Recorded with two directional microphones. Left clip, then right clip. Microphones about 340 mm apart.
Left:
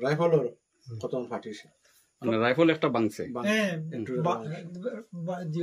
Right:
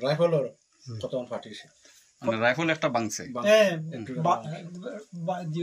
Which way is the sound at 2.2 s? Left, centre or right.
Centre.